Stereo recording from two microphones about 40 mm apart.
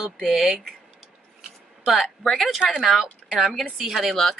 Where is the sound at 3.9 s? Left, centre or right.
Centre.